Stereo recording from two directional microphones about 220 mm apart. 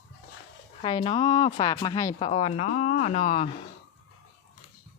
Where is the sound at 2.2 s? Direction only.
30° left (ahead or behind).